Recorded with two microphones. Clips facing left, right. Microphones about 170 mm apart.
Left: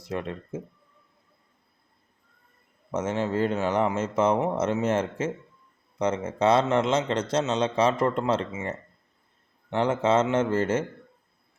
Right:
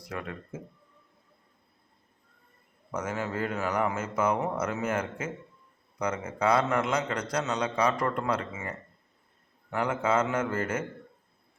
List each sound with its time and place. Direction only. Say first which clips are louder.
0.0 s a man's voice: left 5 dB; 25° left (ahead or behind)
2.9 s a man's voice: left 6 dB; 25° left (ahead or behind)